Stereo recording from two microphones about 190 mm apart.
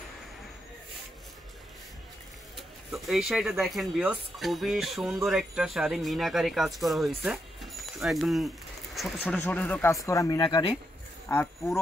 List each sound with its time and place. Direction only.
2.5 s speech: centre (ahead or behind); by 10.8 s 30° left (ahead or behind)
11.2 s speech: 15° left (ahead or behind)